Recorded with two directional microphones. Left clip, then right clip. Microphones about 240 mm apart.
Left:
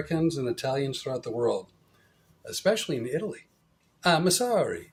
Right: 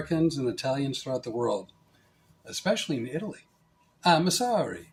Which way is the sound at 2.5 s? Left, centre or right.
Left.